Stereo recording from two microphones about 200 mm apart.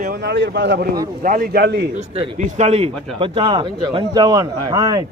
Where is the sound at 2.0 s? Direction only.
30° right (ahead or behind).